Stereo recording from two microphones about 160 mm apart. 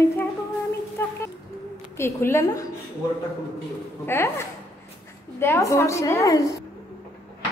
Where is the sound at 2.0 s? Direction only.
15° left (ahead or behind).